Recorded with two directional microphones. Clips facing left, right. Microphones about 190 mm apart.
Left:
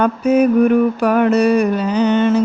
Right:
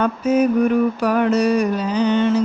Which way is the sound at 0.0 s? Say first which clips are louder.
Left 3 dB; 60° left (ahead or behind).